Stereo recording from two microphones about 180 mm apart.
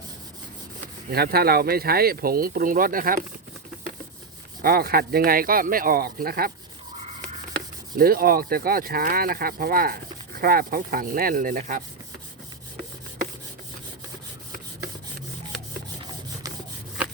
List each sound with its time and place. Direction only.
1.1 s speech: 60° right (ahead or behind)
4.6 s speech: 55° right (ahead or behind)
7.9 s speech: 55° right (ahead or behind)